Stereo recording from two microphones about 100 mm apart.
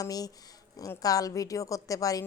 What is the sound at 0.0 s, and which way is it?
A woman's voice, 40° left (ahead or behind).